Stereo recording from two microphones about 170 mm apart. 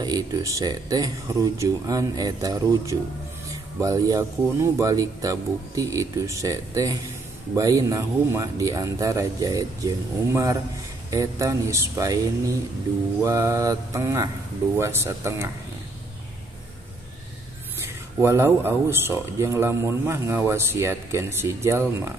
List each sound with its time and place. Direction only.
0.0 s speech: 20° right (ahead or behind)
17.8 s speech: 15° right (ahead or behind)